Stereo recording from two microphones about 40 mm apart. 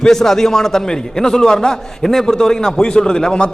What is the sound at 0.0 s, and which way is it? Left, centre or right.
A man's voice, centre.